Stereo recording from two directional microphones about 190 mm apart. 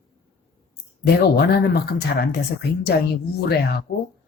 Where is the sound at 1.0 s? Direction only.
55° left (ahead or behind).